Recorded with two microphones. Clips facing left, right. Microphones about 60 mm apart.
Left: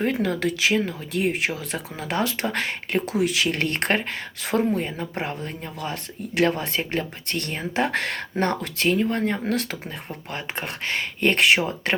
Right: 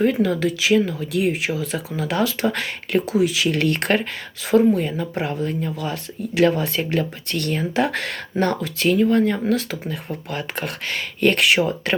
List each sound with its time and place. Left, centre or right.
0.0 s speech: left
0.7 s speech: left
3.2 s speech: left